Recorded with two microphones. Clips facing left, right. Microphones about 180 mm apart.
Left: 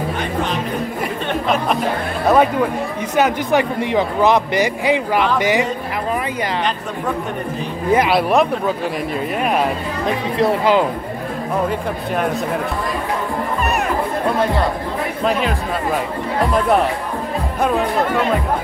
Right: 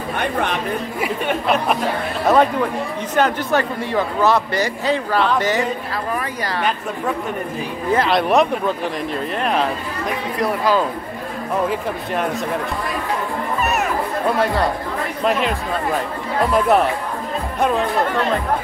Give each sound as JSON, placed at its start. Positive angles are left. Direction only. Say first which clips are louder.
{"t": 0.2, "sound": "music", "louder": "right 4 dB", "side_deg": -60}
{"t": 1.0, "sound": "chatter", "louder": "right 2 dB", "side_deg": -5}
{"t": 2.2, "sound": "speech", "louder": "left 1 dB", "side_deg": 5}
{"t": 7.9, "sound": "speech", "louder": "left 1 dB", "side_deg": 10}
{"t": 10.0, "sound": "speech", "louder": "left 4 dB", "side_deg": 25}
{"t": 17.6, "sound": "speech", "louder": "left 1 dB", "side_deg": 0}